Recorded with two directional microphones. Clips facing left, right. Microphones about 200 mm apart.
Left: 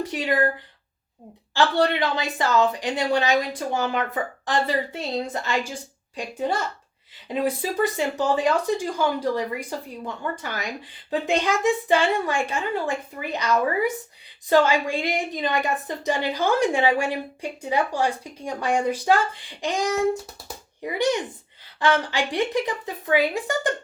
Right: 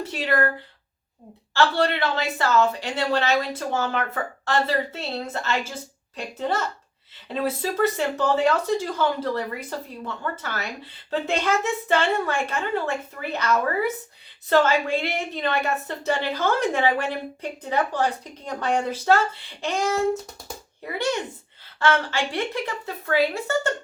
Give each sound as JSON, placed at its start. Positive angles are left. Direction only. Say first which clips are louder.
{"t": 0.0, "sound": "a woman's voice", "louder": "left 1 dB", "side_deg": 15}
{"t": 1.5, "sound": "a woman's voice", "louder": "left 1 dB", "side_deg": 15}